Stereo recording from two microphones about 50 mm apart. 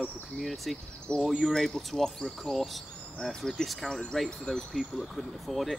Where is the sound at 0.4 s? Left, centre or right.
Centre.